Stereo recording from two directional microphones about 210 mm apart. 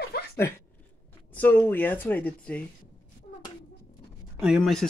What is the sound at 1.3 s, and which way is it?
Speech, 10° left (ahead or behind).